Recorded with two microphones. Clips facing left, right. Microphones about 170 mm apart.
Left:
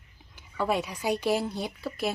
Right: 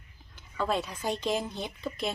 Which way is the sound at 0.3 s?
10° left (ahead or behind).